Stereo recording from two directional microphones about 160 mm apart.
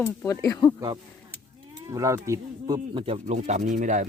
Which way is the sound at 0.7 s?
25° right (ahead or behind).